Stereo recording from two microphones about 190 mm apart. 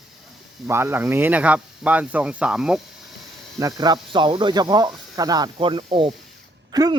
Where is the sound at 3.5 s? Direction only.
20° right (ahead or behind).